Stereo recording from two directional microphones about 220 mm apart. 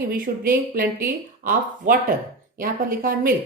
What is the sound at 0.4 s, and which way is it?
A woman's voice, 40° right (ahead or behind).